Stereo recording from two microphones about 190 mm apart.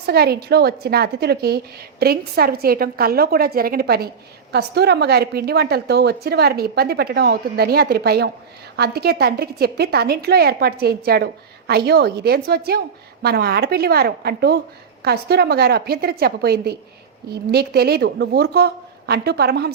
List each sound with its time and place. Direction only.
0.0 s a woman's voice: 55° right (ahead or behind)